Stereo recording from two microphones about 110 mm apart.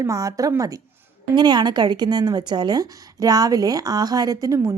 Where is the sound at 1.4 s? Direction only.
40° right (ahead or behind).